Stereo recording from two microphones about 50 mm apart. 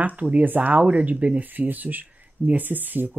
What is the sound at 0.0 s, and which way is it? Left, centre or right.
Speech, right.